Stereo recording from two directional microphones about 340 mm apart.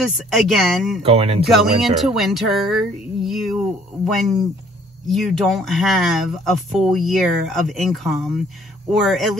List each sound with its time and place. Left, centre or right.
0.0 s speech: centre
1.0 s speech: centre
1.4 s speech: centre